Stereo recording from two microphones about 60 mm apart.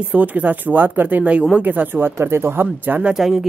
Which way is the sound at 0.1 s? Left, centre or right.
Right.